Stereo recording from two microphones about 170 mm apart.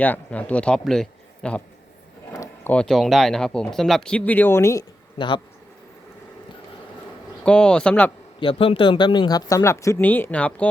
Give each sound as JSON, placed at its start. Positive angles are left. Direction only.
{"t": 0.0, "sound": "speech", "side_deg": 10}
{"t": 2.3, "sound": "a sound", "side_deg": 20}
{"t": 2.7, "sound": "speech", "side_deg": 5}
{"t": 7.4, "sound": "speech", "side_deg": 5}
{"t": 8.4, "sound": "speech", "side_deg": 30}